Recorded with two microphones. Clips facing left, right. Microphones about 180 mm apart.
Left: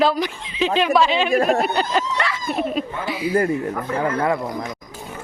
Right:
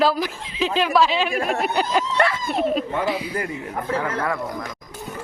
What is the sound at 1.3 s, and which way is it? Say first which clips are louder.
Speech: left 6 dB; 40° left (ahead or behind).